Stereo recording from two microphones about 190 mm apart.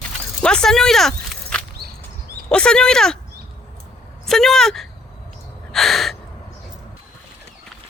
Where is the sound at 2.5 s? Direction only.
5° left (ahead or behind).